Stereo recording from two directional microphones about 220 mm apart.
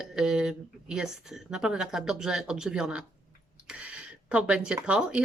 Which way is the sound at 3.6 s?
5° right (ahead or behind).